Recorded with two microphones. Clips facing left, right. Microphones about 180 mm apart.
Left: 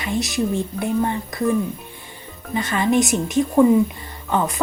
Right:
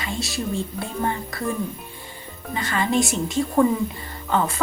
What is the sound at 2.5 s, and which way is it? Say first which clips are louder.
A woman's voice: left 4 dB; 20° left (ahead or behind).